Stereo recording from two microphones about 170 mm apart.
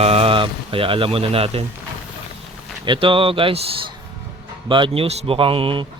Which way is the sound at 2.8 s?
30° right (ahead or behind).